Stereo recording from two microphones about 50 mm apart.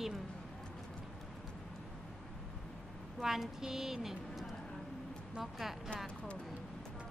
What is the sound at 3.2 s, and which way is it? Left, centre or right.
A woman's voice, centre.